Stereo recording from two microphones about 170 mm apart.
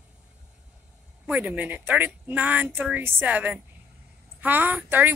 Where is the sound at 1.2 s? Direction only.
10° right (ahead or behind).